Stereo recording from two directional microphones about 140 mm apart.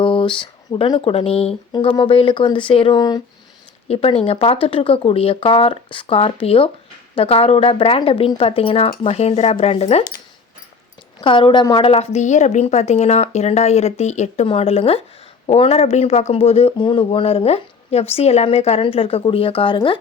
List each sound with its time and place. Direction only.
0.0 s speech: 35° left (ahead or behind)
3.8 s speech: 45° left (ahead or behind)
11.2 s speech: 35° left (ahead or behind); by 14.4 s 55° left (ahead or behind)
14.4 s speech: 45° left (ahead or behind)